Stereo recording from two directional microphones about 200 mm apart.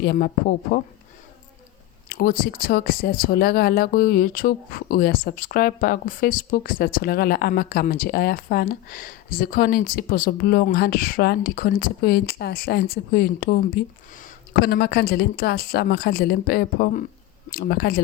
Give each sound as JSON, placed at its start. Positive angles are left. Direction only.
{"t": 0.0, "sound": "speech", "side_deg": 50}
{"t": 2.0, "sound": "speech", "side_deg": 45}